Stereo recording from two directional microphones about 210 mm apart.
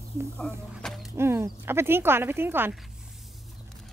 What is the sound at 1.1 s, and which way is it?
Speech, 10° right (ahead or behind).